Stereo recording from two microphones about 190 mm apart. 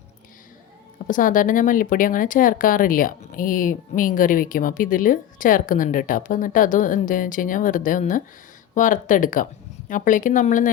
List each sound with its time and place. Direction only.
1.0 s a woman's voice: 45° left (ahead or behind)